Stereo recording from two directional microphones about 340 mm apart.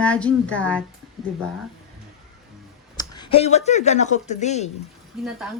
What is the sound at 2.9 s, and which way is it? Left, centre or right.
A woman's voice, centre.